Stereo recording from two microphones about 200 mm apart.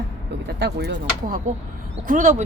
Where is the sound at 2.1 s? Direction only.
40° right (ahead or behind).